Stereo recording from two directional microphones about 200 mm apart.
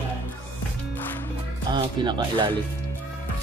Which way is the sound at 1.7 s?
20° right (ahead or behind).